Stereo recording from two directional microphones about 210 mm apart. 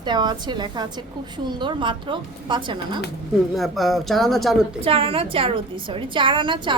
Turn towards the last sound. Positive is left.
turn(degrees=-25)  # may be behind; listen again after turning